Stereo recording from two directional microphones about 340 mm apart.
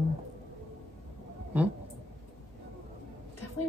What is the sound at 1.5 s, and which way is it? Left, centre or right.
Speech, centre.